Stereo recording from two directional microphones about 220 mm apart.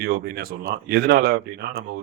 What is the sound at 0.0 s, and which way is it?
Speech, 45° right (ahead or behind).